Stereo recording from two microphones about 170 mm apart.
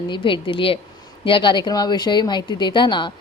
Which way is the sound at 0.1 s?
30° left (ahead or behind).